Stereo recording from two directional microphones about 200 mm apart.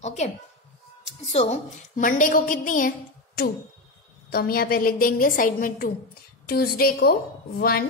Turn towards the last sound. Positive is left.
turn(degrees=50)  # may be behind; listen again after turning